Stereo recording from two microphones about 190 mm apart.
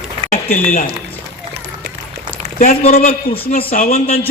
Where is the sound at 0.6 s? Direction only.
40° left (ahead or behind).